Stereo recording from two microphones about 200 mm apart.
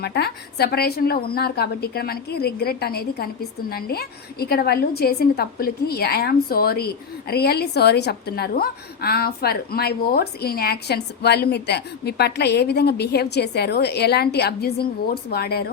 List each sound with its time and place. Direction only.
0.0 s a woman's voice: 55° left (ahead or behind)